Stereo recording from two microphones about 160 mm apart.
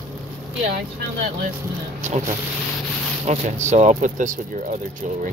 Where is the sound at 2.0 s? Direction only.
40° right (ahead or behind).